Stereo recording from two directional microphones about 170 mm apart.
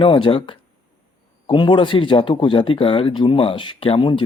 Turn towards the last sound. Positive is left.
turn(degrees=30)  # may be behind; listen again after turning